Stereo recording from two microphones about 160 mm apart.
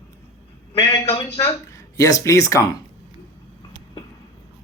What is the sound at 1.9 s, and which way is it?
Speech, 20° left (ahead or behind).